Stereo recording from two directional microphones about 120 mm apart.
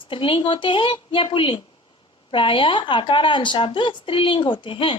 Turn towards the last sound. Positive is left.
turn(degrees=45)  # may be behind; listen again after turning